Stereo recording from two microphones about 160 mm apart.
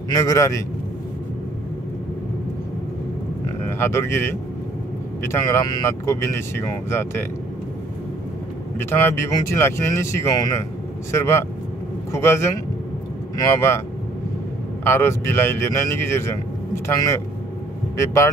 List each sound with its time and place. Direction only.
0.1 s speech: 20° left (ahead or behind)
3.6 s speech: 15° left (ahead or behind)
8.7 s speech: 15° left (ahead or behind)
14.9 s speech: 15° left (ahead or behind)